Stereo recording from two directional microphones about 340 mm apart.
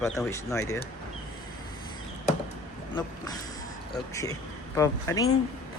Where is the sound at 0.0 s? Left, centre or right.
Centre.